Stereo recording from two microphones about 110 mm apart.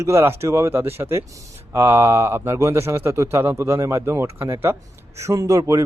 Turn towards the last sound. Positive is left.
turn(degrees=-30)  # may be behind; listen again after turning